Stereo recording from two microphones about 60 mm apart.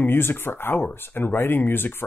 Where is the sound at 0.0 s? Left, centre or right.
Left.